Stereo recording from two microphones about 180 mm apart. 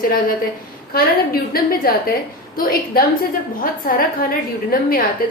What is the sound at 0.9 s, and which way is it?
A woman's voice, 55° left (ahead or behind).